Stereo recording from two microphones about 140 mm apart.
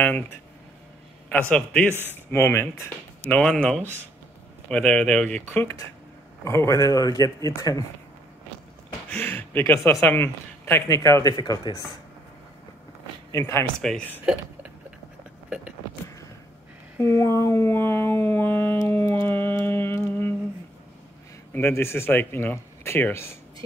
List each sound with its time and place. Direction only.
1.5 s a man's voice: 5° left (ahead or behind)
1.9 s speech: 15° right (ahead or behind)
2.3 s speech: 15° left (ahead or behind)
5.5 s speech: 20° left (ahead or behind)
9.1 s speech: 10° left (ahead or behind)
13.3 s speech: 20° left (ahead or behind)
13.7 s speech: 5° left (ahead or behind)
17.0 s a sound: 20° left (ahead or behind)
21.5 s speech: 15° left (ahead or behind)